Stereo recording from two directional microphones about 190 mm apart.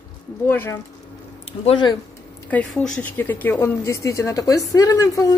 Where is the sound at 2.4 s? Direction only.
5° left (ahead or behind).